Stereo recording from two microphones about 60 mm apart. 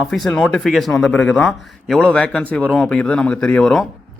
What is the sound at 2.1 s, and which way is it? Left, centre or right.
A man's voice, centre.